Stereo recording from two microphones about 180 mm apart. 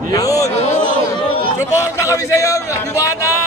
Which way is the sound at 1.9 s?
15° left (ahead or behind).